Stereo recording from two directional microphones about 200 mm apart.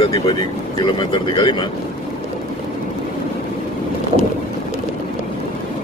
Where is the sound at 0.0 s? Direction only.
25° left (ahead or behind).